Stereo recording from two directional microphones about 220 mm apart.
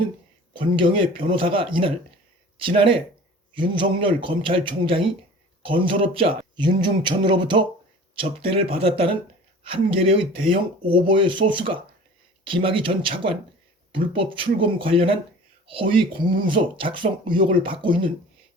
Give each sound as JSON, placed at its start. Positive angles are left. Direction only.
{"t": 0.5, "sound": "speech", "side_deg": -20}